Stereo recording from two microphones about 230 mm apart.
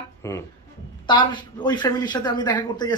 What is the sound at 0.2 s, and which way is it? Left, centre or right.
Speech, centre.